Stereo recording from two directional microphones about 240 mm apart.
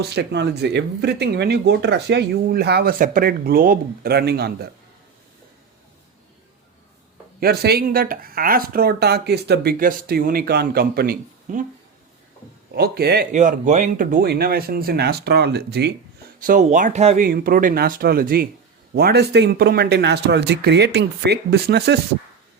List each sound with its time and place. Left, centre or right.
0.0 s speech: right
7.3 s speech: right
12.7 s speech: right
17.2 s speech: right